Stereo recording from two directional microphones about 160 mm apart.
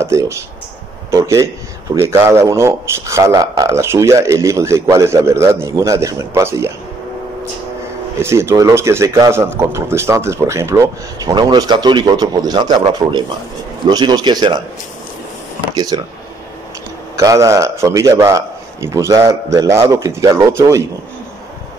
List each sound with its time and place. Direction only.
0.0 s a man's voice: 15° right (ahead or behind)
8.2 s speech: 15° right (ahead or behind)
13.0 s speech: 35° right (ahead or behind)
13.8 s a man's voice: 25° right (ahead or behind)
15.7 s speech: 25° right (ahead or behind)
17.2 s a man's voice: 20° right (ahead or behind)